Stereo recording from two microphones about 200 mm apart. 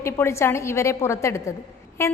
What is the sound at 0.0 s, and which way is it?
A woman's voice, 15° left (ahead or behind).